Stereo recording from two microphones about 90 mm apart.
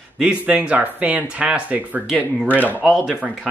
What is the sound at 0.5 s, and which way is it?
Speech, 15° right (ahead or behind).